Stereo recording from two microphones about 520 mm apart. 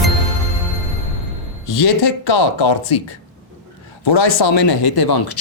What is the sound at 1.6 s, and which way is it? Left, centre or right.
Speech, left.